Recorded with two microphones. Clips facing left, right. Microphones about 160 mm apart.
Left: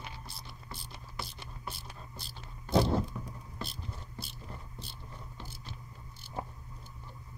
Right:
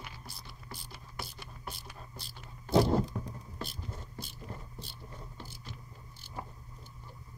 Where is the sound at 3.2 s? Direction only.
45° right (ahead or behind).